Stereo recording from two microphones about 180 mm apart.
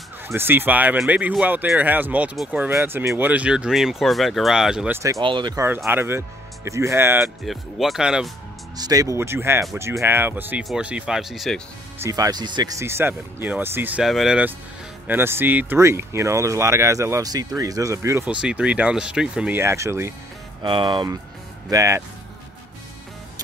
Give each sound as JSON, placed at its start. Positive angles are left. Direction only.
{"t": 0.3, "sound": "speech", "side_deg": -10}
{"t": 5.9, "sound": "speech", "side_deg": -10}
{"t": 7.4, "sound": "speech", "side_deg": 0}
{"t": 8.7, "sound": "speech", "side_deg": -20}
{"t": 12.0, "sound": "speech", "side_deg": -20}
{"t": 20.6, "sound": "speech", "side_deg": -25}